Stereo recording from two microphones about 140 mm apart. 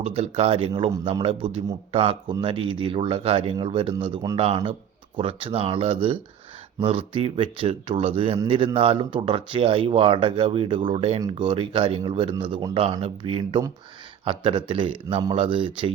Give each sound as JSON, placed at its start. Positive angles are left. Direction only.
{"t": 0.0, "sound": "speech", "side_deg": -45}